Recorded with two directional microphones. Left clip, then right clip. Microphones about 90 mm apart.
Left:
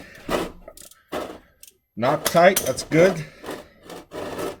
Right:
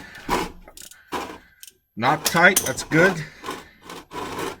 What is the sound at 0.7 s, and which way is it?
Mechanisms, 20° right (ahead or behind).